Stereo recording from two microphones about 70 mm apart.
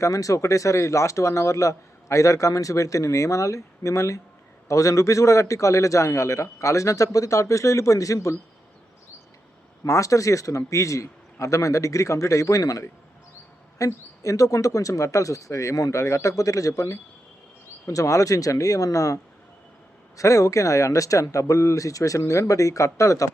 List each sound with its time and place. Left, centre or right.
0.0 s speech: left
9.8 s speech: left